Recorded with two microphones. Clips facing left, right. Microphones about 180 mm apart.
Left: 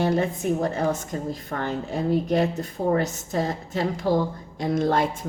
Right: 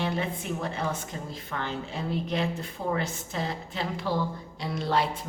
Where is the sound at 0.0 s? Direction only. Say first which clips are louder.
Left 7 dB; 45° left (ahead or behind).